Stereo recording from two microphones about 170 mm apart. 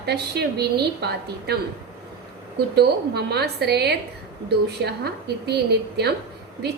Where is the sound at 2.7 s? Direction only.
70° right (ahead or behind).